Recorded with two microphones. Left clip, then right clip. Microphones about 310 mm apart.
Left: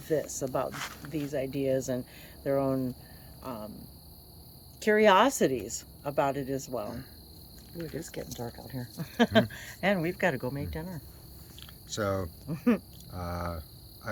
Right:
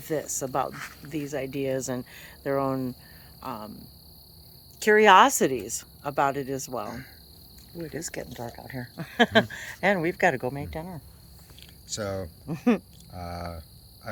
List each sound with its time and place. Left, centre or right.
0.0 s speech: centre
0.7 s speech: left
1.1 s speech: centre
4.8 s speech: centre
7.9 s speech: centre
11.6 s a sound: centre
12.5 s speech: centre
13.1 s speech: centre